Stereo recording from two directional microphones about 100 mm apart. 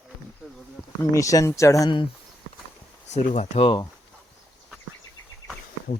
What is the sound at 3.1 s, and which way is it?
Speech, 85° left.